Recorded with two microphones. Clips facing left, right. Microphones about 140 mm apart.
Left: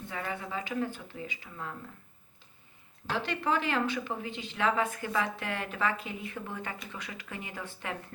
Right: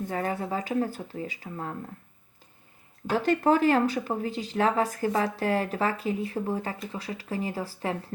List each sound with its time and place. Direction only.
0.1 s speech: 40° right (ahead or behind)
3.1 s speech: 45° right (ahead or behind)